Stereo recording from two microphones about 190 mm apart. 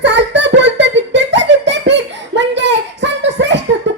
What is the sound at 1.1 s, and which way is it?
Belly laugh, 70° right (ahead or behind).